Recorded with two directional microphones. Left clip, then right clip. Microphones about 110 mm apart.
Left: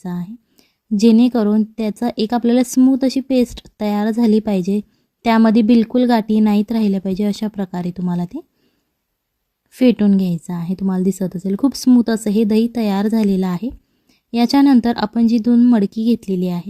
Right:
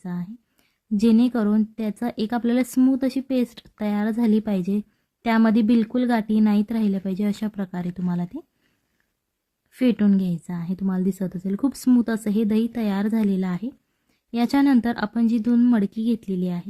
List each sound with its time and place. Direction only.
0.0 s a woman's voice: 45° left (ahead or behind)
9.7 s a woman's voice: 45° left (ahead or behind)